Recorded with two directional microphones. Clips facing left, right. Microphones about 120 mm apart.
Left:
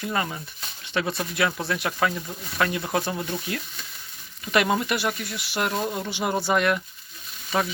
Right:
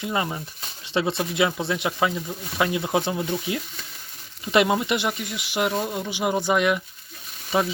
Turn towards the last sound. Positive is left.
turn(degrees=-20)  # may be behind; listen again after turning